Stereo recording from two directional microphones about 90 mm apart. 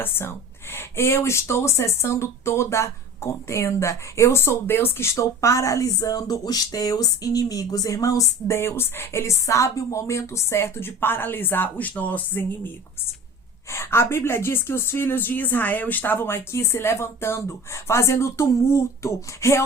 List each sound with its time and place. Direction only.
0.0 s a woman's voice: 25° left (ahead or behind)